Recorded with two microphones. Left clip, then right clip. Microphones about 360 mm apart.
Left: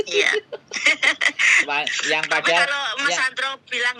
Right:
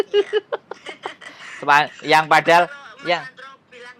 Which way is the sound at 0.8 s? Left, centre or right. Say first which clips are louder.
Left 16 dB; left.